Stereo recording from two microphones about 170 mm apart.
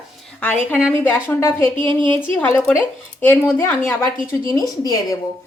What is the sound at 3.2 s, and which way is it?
Speech, 10° left (ahead or behind).